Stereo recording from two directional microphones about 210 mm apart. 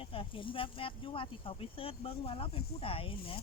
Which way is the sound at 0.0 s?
25° left (ahead or behind).